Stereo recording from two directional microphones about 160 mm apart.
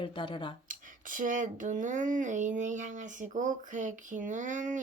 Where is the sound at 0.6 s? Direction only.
55° right (ahead or behind).